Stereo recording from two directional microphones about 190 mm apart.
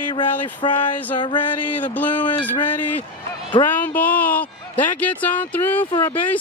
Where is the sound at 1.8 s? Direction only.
10° left (ahead or behind).